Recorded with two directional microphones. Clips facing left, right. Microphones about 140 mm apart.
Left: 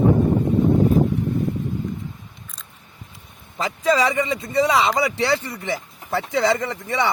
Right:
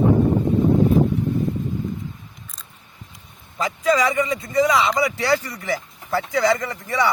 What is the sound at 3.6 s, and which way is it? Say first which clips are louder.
Speech: even; 30° left (ahead or behind).